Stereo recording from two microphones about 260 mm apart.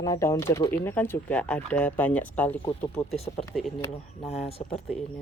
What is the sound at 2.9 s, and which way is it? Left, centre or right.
Speech, left.